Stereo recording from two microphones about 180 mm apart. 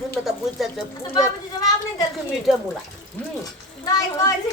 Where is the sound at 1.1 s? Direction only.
20° left (ahead or behind).